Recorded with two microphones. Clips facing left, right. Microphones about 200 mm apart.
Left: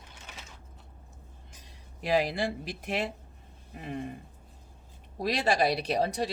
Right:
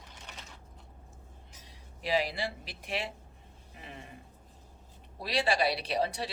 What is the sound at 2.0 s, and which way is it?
Speech, 50° left (ahead or behind).